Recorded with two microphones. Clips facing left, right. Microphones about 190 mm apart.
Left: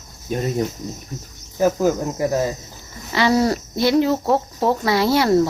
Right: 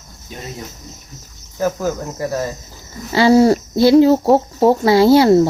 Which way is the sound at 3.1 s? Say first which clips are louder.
Right 7 dB; 30° right (ahead or behind).